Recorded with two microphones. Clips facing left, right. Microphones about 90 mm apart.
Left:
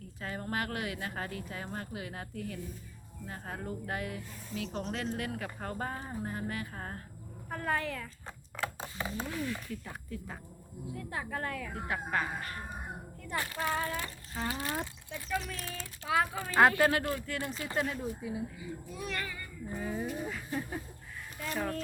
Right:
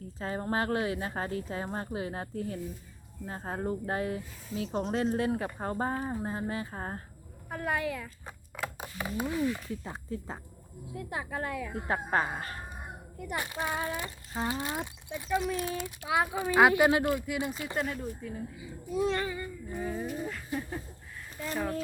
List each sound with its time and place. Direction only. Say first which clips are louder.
0.2 s speech: right 5 dB; 30° right (ahead or behind)
7.5 s speech: right 2 dB; 10° right (ahead or behind)
10.9 s speech: right 3 dB; 15° right (ahead or behind)
11.7 s speech: right 5 dB; 35° right (ahead or behind)
13.1 s speech: right 2 dB; 15° right (ahead or behind)
17.7 s speech: left 2 dB; centre (ahead or behind)
18.5 s speech: right 8 dB; 20° right (ahead or behind)
19.7 s speech: right 1 dB; centre (ahead or behind)